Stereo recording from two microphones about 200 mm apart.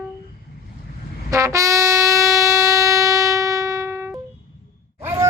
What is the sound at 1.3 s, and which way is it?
Wind instrument, 15° right (ahead or behind).